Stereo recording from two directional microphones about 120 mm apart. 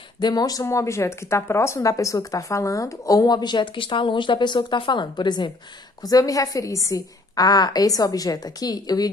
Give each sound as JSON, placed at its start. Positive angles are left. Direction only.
{"t": 0.2, "sound": "a woman's voice", "side_deg": 35}